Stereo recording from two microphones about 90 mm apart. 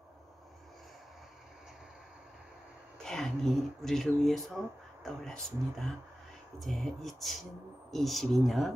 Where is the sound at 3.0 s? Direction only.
5° left (ahead or behind).